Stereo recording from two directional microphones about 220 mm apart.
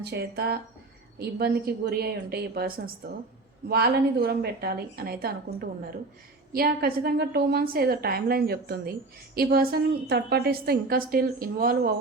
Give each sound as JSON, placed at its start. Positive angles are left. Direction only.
{"t": 0.0, "sound": "a woman's voice", "side_deg": -50}